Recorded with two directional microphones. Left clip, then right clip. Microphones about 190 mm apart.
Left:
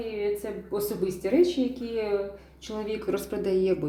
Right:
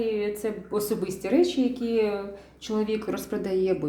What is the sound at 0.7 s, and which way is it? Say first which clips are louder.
Speech: left 1 dB; 20° right (ahead or behind).